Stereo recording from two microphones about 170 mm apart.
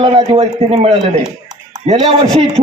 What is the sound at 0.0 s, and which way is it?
A man's voice, 30° right (ahead or behind).